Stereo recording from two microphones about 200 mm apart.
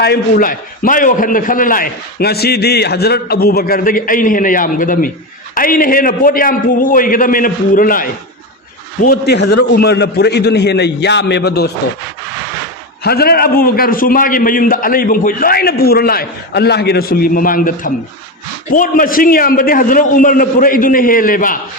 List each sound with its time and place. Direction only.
0.0 s a man's voice: 50° left (ahead or behind)
9.0 s a man's voice: 55° left (ahead or behind)
13.1 s a man's voice: 50° left (ahead or behind)